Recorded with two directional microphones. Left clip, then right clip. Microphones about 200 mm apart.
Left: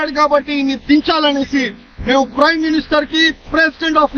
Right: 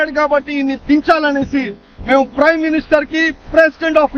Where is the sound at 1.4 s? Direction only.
30° right (ahead or behind).